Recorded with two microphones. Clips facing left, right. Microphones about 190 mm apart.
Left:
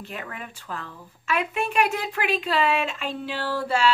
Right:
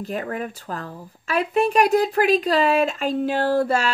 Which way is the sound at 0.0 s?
40° right (ahead or behind).